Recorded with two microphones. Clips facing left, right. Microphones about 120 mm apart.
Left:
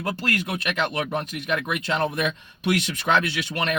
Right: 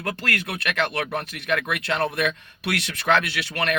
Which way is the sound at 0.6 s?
15° left (ahead or behind).